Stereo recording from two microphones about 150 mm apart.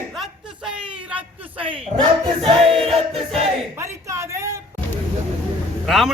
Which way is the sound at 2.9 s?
Centre (ahead or behind).